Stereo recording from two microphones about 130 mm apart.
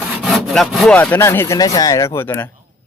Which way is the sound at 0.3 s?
Centre (ahead or behind).